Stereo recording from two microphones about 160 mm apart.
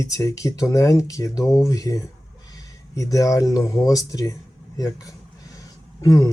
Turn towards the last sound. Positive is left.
turn(degrees=25)  # may be behind; listen again after turning